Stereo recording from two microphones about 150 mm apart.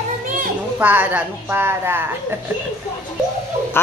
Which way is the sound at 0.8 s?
10° right (ahead or behind).